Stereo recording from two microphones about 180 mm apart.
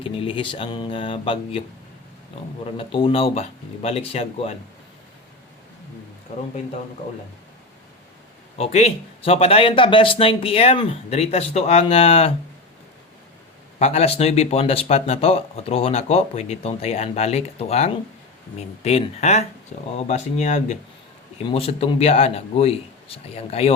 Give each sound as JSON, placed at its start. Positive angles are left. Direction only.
{"t": 0.0, "sound": "speech", "side_deg": 30}
{"t": 2.7, "sound": "speech", "side_deg": 30}
{"t": 8.5, "sound": "speech", "side_deg": 35}
{"t": 13.7, "sound": "speech", "side_deg": 35}